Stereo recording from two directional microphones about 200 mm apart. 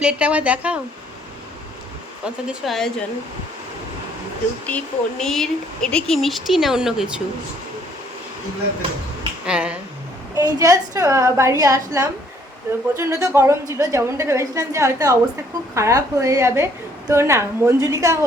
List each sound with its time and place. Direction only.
0.0 s a woman's voice: 5° right (ahead or behind)
2.2 s speech: centre (ahead or behind)
4.6 s speech: 5° left (ahead or behind)
9.5 s speech: 5° right (ahead or behind)
10.3 s a woman's voice: 15° right (ahead or behind)